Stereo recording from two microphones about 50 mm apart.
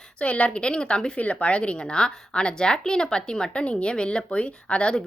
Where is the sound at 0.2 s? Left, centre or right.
Left.